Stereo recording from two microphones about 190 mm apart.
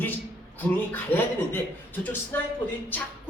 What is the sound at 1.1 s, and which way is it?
A man's voice, 10° left (ahead or behind).